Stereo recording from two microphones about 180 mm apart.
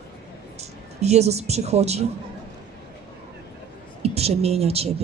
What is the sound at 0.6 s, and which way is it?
Speech, 35° right (ahead or behind).